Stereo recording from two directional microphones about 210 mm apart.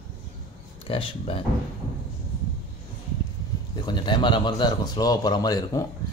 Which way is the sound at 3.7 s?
20° left (ahead or behind).